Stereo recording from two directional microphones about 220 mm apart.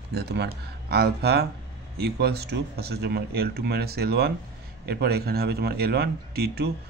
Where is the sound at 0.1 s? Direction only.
50° right (ahead or behind).